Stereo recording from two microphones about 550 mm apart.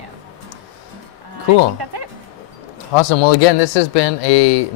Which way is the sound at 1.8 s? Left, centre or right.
Right.